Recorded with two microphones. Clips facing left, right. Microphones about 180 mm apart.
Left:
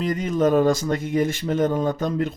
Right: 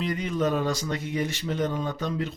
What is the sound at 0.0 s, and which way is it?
Speech, 45° left (ahead or behind).